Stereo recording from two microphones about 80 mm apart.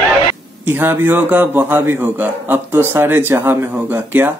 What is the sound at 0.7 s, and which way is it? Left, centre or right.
Speech, right.